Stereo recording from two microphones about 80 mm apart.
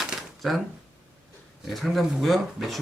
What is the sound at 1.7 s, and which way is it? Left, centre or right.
Speech, centre.